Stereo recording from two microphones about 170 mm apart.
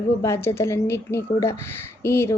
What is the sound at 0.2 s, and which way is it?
Speech, 15° left (ahead or behind).